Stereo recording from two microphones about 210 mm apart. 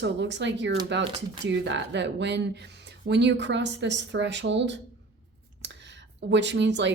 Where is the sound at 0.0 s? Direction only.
55° right (ahead or behind).